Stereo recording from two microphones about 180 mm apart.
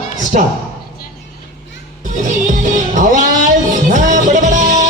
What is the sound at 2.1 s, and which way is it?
Music, 45° right (ahead or behind).